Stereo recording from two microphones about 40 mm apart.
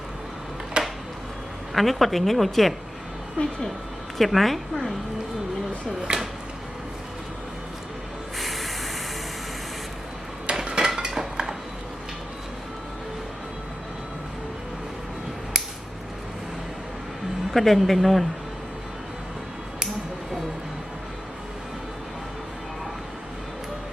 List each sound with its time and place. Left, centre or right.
0.8 s a sound: right
1.7 s a woman's voice: centre
3.4 s speech: left
4.2 s a woman's voice: centre
6.1 s music: right
8.4 s spray: centre
10.5 s cutlery: centre
17.5 s a woman's voice: centre